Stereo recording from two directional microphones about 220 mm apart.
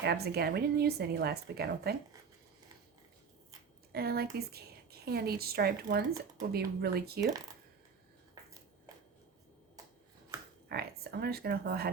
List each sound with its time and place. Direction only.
0.0 s a woman's voice: 45° right (ahead or behind)
3.9 s a woman's voice: 45° right (ahead or behind)
10.7 s speech: 45° right (ahead or behind)